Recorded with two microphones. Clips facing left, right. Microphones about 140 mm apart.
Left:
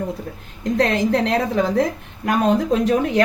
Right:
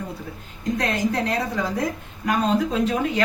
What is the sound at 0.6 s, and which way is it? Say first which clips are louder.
A woman's voice: left 5 dB; 65° left (ahead or behind).